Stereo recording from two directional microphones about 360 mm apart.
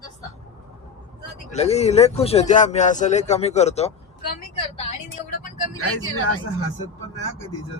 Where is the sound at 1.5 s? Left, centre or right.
Centre.